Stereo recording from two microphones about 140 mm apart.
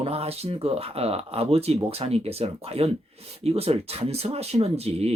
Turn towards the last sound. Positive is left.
turn(degrees=-45)  # may be behind; listen again after turning